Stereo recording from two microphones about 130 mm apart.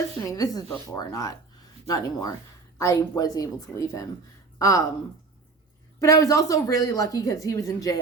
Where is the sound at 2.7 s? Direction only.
25° left (ahead or behind).